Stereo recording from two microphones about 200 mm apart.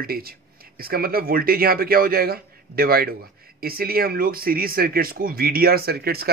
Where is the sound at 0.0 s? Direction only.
50° right (ahead or behind).